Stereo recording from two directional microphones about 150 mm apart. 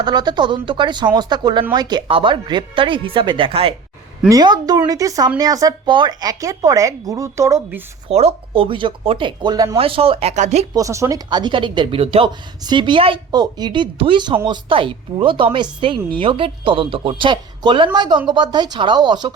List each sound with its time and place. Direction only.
0.0 s speech: 30° right (ahead or behind)
4.3 s speech: 25° right (ahead or behind)
8.1 s speech: 40° right (ahead or behind)
9.7 s speech: 40° right (ahead or behind)
10.8 s speech: 20° right (ahead or behind)